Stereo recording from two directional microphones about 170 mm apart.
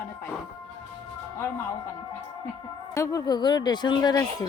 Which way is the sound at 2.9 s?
20° left (ahead or behind).